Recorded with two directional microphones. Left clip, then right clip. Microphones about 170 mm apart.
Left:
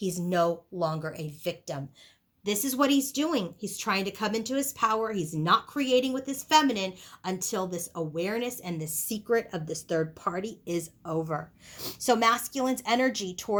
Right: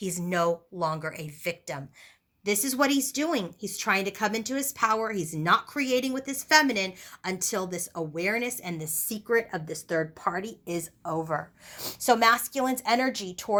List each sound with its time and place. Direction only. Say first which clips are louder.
0.0 s a woman's voice: even; 10° right (ahead or behind)